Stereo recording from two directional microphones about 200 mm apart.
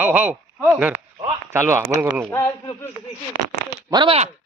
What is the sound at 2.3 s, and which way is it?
Speech, 15° left (ahead or behind).